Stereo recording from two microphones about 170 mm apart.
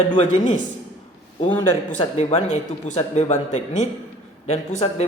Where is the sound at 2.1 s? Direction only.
35° left (ahead or behind).